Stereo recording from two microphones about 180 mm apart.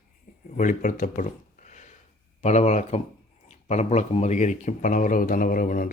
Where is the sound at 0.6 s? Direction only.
45° left (ahead or behind).